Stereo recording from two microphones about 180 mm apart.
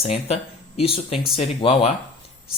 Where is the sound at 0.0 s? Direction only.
35° left (ahead or behind).